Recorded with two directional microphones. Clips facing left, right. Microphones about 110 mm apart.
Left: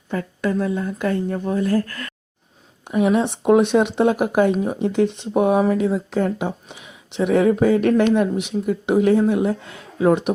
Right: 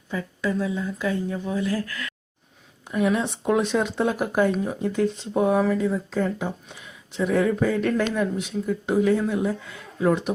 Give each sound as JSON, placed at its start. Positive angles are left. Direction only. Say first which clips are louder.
{"t": 0.1, "sound": "speech", "louder": "left 4 dB", "side_deg": 55}
{"t": 2.8, "sound": "speech", "louder": "left 5 dB", "side_deg": 55}